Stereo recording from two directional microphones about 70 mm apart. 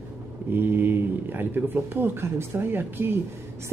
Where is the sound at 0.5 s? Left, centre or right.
Right.